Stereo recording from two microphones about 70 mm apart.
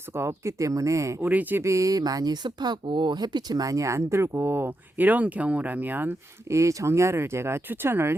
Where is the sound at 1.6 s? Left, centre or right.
Right.